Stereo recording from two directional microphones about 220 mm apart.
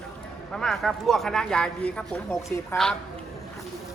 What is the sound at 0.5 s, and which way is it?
Speech, centre (ahead or behind).